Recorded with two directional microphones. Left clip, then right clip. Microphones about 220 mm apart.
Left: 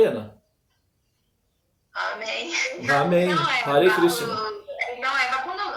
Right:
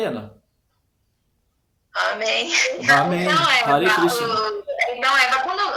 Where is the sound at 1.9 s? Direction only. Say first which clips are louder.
Right 7 dB; 50° right (ahead or behind).